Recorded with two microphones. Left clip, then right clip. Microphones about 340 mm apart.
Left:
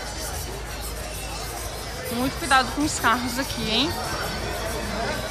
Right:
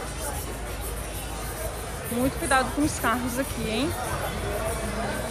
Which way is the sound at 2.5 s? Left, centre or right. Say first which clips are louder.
Left 4 dB; centre.